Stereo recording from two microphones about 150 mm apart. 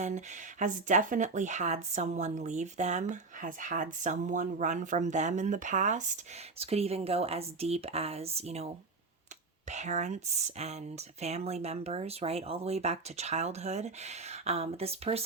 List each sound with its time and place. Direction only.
0.0 s speech: 55° right (ahead or behind)
6.6 s speech: 40° right (ahead or behind)